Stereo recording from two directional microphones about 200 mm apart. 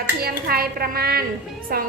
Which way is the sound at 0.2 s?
50° right (ahead or behind).